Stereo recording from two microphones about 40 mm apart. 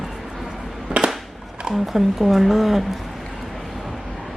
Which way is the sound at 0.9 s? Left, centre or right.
Right.